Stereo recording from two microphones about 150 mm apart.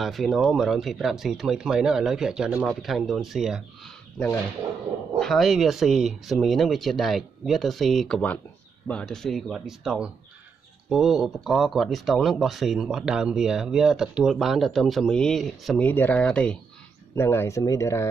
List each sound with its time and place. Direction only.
0.0 s speech: centre (ahead or behind)
5.2 s speech: centre (ahead or behind)
15.8 s speech: 10° left (ahead or behind)